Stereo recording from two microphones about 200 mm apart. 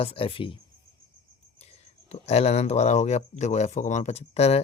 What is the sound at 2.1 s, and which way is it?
Speech, 30° left (ahead or behind).